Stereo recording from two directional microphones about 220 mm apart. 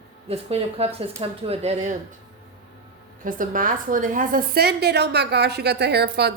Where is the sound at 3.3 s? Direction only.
40° right (ahead or behind).